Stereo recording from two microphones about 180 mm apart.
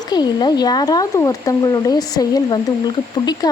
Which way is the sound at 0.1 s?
25° left (ahead or behind).